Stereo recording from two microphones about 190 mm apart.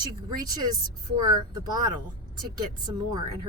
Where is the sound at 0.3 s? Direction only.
20° right (ahead or behind).